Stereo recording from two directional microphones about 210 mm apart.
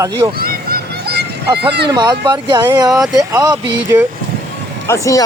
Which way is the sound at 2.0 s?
20° right (ahead or behind).